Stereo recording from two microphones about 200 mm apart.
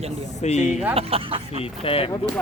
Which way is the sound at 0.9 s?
30° right (ahead or behind).